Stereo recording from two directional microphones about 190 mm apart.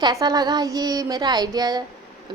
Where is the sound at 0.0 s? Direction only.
20° right (ahead or behind).